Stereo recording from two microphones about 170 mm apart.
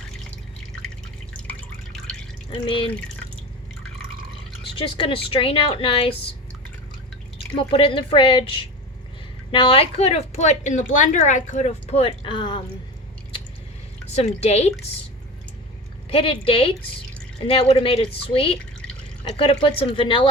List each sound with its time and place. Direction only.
1.3 s drip: 5° left (ahead or behind)
2.5 s a woman's voice: 30° left (ahead or behind)
4.8 s a woman's voice: 30° left (ahead or behind)
7.3 s a woman's voice: 35° left (ahead or behind)
14.1 s a woman's voice: 40° left (ahead or behind)
16.0 s a woman's voice: 30° left (ahead or behind)